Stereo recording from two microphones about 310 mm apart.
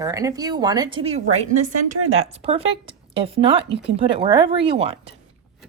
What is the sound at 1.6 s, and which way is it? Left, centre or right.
Speech, right.